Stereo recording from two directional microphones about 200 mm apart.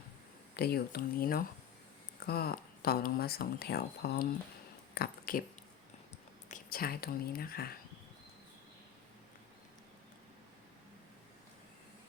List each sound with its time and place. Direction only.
0.5 s speech: 50° left (ahead or behind)
6.5 s speech: 45° left (ahead or behind)